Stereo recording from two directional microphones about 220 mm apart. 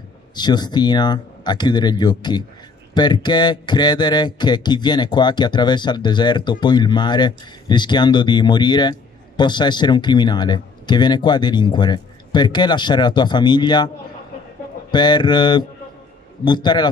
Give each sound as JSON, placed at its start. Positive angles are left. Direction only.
{"t": 0.4, "sound": "speech", "side_deg": 20}